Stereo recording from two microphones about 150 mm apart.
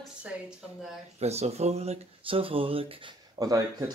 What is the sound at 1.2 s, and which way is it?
Speech, 45° right (ahead or behind).